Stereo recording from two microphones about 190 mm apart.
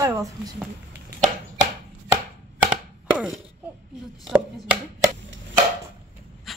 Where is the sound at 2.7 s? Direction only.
5° right (ahead or behind).